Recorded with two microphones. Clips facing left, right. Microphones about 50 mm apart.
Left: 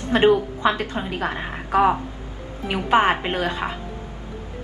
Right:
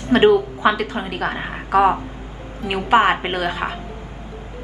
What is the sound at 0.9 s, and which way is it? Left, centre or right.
A woman's voice, centre.